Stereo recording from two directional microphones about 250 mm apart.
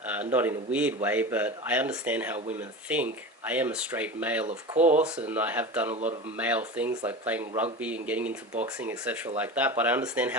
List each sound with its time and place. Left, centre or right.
0.0 s speech: centre
4.8 s speech: right
5.0 s speech: centre